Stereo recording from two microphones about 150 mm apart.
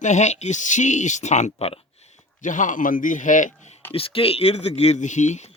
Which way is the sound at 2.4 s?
60° left (ahead or behind).